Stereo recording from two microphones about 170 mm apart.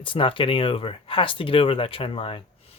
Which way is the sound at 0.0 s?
30° left (ahead or behind).